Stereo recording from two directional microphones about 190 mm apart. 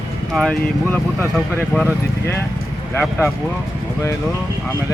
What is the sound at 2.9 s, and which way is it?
Speech, 10° left (ahead or behind).